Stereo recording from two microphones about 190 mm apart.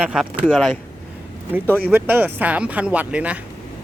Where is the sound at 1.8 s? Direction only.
10° right (ahead or behind).